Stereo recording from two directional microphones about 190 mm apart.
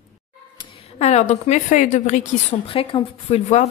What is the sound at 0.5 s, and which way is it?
A woman's voice, 30° left (ahead or behind).